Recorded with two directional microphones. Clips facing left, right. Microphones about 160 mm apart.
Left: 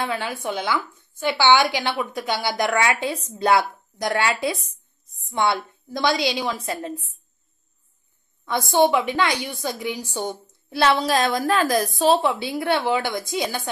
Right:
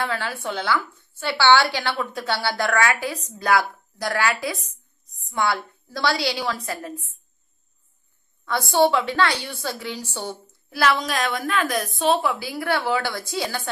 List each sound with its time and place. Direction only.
0.0 s a woman's voice: 20° left (ahead or behind)
8.5 s a woman's voice: 20° left (ahead or behind)